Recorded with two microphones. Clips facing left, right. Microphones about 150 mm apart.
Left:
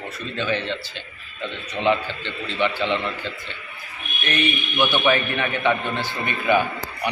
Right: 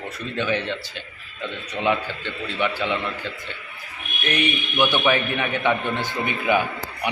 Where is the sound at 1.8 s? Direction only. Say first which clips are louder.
Left 2 dB; 5° right (ahead or behind).